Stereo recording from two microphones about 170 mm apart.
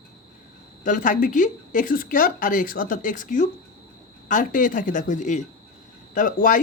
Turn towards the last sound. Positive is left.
turn(degrees=55)  # may be behind; listen again after turning